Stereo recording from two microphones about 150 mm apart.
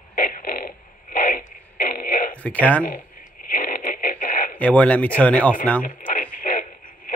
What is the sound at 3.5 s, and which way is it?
Radio, 65° left (ahead or behind).